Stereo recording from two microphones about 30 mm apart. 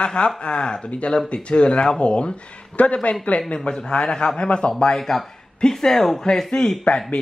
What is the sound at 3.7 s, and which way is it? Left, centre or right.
Speech, left.